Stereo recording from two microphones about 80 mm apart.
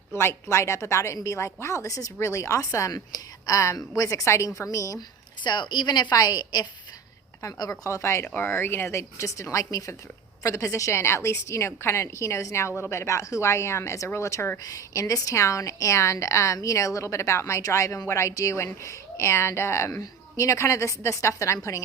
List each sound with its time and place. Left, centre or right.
0.1 s a woman's voice: left
4.9 s a woman's voice: left
7.4 s a woman's voice: left
8.3 s a woman's voice: left